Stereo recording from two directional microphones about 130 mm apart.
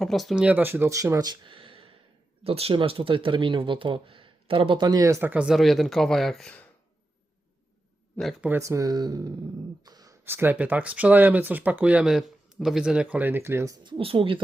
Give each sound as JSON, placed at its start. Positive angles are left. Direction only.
{"t": 0.0, "sound": "speech", "side_deg": 0}
{"t": 0.4, "sound": "speech", "side_deg": -15}
{"t": 5.3, "sound": "speech", "side_deg": -5}
{"t": 8.4, "sound": "speech", "side_deg": -20}
{"t": 9.8, "sound": "a sound", "side_deg": -30}
{"t": 10.2, "sound": "speech", "side_deg": -15}
{"t": 13.7, "sound": "speech", "side_deg": -40}